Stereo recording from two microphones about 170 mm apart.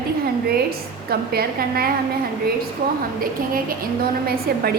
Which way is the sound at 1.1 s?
65° right (ahead or behind).